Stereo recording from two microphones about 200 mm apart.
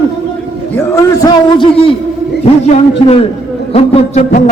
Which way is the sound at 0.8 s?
20° left (ahead or behind).